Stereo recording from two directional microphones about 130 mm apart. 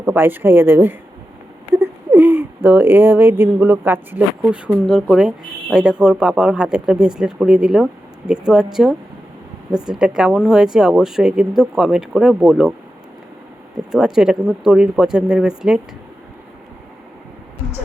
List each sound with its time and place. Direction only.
0.0 s speech: 15° right (ahead or behind)
1.7 s a sound: 15° right (ahead or behind)
2.6 s speech: 15° right (ahead or behind)
4.9 s speech: centre (ahead or behind)
13.9 s speech: 5° right (ahead or behind)